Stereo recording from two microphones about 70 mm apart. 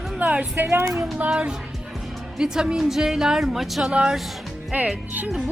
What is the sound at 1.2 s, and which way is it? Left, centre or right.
Speech, centre.